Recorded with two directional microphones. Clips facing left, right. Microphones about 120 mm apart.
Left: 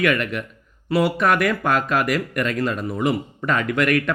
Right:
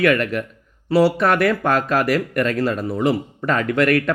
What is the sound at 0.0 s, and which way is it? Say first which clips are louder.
Speech: right 3 dB; 35° right (ahead or behind).